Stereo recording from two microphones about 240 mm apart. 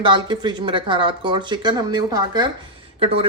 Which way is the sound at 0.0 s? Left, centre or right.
Centre.